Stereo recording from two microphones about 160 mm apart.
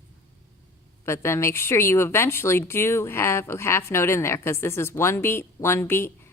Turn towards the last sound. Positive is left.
turn(degrees=15)  # may be behind; listen again after turning